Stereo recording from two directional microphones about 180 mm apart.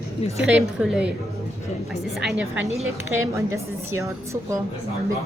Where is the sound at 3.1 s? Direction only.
15° right (ahead or behind).